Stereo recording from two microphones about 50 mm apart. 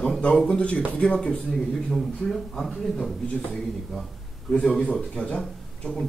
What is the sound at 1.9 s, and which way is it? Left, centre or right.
Speech, centre.